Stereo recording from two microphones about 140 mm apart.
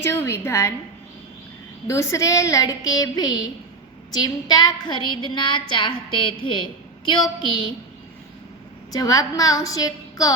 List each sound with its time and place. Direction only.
0.0 s a woman's voice: 20° left (ahead or behind)
1.9 s a woman's voice: 20° left (ahead or behind)
8.9 s a woman's voice: 25° left (ahead or behind)